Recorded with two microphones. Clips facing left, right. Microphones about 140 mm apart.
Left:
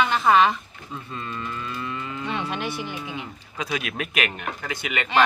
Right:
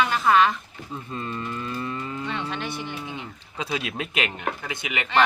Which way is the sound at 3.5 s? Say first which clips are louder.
Even; 25° right (ahead or behind).